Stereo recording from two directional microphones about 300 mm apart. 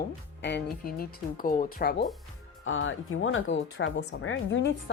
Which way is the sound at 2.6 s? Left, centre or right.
Left.